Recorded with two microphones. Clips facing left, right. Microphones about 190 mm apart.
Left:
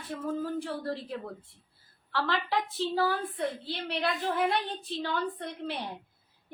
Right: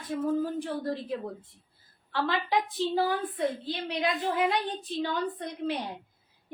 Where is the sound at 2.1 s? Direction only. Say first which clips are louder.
Right 2 dB; 15° right (ahead or behind).